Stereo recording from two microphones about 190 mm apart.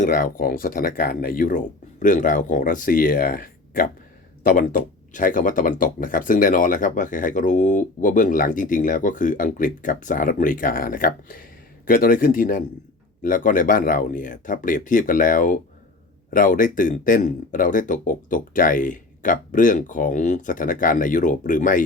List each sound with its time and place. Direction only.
0.0 s speech: 45° left (ahead or behind)